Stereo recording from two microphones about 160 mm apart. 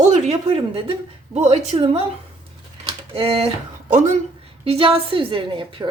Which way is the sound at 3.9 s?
50° right (ahead or behind).